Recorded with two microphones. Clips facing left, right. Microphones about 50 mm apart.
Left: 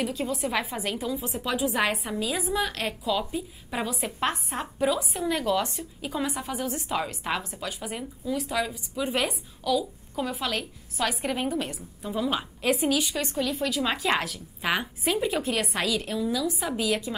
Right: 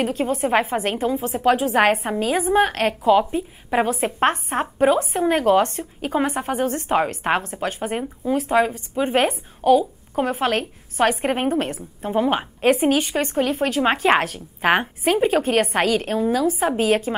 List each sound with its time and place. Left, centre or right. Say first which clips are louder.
0.0 s a woman's voice: right 7 dB; right